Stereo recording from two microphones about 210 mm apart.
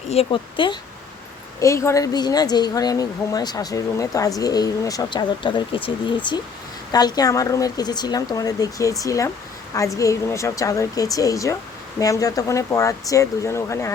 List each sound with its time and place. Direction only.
0.1 s a woman's voice: 25° left (ahead or behind)